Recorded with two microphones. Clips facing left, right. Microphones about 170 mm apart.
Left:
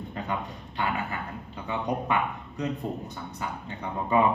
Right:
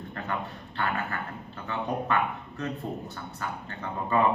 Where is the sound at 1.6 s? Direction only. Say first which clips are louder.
Left 1 dB; 15° left (ahead or behind).